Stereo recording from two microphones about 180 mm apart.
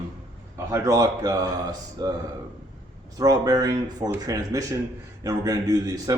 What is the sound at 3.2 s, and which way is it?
Speech, 20° right (ahead or behind).